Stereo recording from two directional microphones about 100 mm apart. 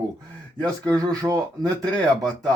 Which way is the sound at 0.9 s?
35° right (ahead or behind).